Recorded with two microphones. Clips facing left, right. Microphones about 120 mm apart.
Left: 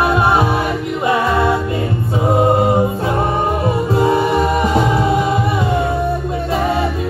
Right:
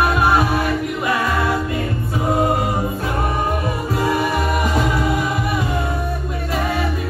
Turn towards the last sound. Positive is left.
turn(degrees=25)  # may be behind; listen again after turning